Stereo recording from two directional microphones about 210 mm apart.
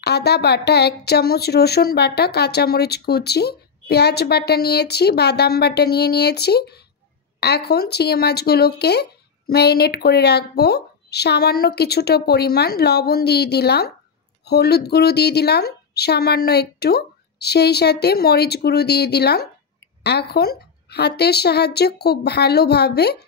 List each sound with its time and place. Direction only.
0.0 s speech: 50° left (ahead or behind)